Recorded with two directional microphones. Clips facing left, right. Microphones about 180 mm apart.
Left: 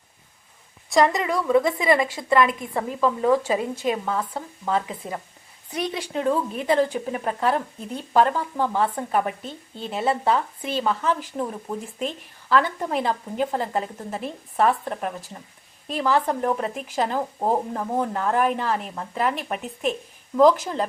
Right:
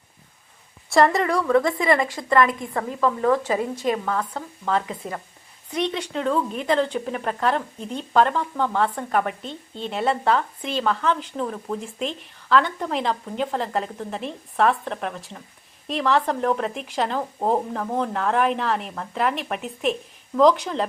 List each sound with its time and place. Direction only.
0.9 s a woman's voice: centre (ahead or behind)
1.6 s speech: 20° left (ahead or behind)
2.1 s speech: 10° left (ahead or behind)
4.1 s speech: 10° left (ahead or behind)